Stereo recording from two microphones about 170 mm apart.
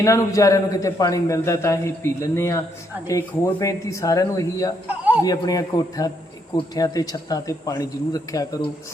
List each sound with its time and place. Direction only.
0.0 s a man's voice: 20° left (ahead or behind)
4.9 s speech: 10° right (ahead or behind)
5.2 s speech: 20° left (ahead or behind)